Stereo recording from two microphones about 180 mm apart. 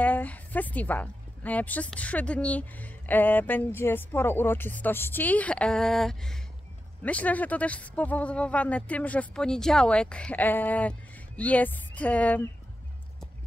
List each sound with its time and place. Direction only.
0.0 s a woman's voice: 10° left (ahead or behind)